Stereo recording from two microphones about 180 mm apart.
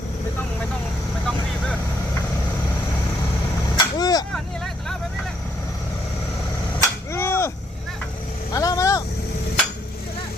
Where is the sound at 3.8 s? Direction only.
20° left (ahead or behind).